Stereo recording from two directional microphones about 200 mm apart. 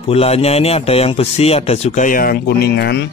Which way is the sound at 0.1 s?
30° left (ahead or behind).